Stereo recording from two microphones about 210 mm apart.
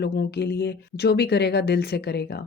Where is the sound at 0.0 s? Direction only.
50° left (ahead or behind).